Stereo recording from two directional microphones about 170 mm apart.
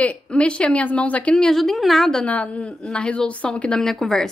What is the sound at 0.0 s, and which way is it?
A woman's voice, 10° left (ahead or behind).